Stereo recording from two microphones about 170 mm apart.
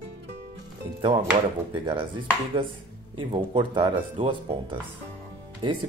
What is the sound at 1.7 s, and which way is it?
Speech, 30° right (ahead or behind).